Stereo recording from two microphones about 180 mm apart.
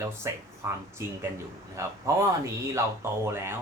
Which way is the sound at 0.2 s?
15° right (ahead or behind).